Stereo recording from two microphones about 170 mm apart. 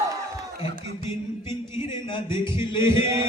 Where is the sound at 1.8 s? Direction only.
30° left (ahead or behind).